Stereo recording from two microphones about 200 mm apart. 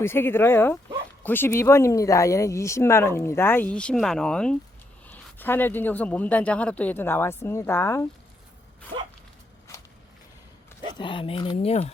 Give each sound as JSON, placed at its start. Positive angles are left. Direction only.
{"t": 0.0, "sound": "speech", "side_deg": 10}
{"t": 10.9, "sound": "speech", "side_deg": 25}